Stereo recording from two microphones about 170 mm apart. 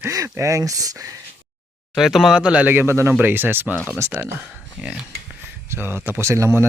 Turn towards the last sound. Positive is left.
turn(degrees=-15)  # may be behind; listen again after turning